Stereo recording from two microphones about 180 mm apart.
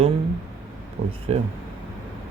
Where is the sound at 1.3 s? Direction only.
35° right (ahead or behind).